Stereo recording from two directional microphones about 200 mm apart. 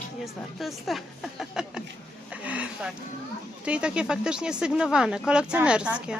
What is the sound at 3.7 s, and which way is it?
Speech, 5° right (ahead or behind).